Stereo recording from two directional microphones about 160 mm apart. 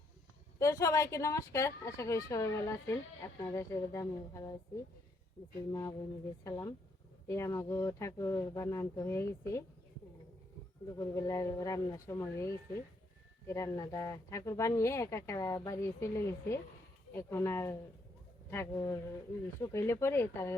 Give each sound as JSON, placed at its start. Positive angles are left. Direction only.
{"t": 0.6, "sound": "speech", "side_deg": 20}
{"t": 5.7, "sound": "speech", "side_deg": 25}
{"t": 10.8, "sound": "speech", "side_deg": 20}